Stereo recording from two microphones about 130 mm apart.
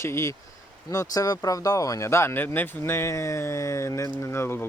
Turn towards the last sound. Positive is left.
turn(degrees=20)  # may be behind; listen again after turning